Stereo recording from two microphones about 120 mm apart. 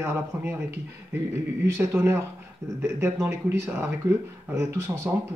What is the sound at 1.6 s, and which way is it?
Speech, 20° right (ahead or behind).